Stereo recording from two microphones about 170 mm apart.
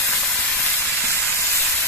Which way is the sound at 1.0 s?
15° left (ahead or behind).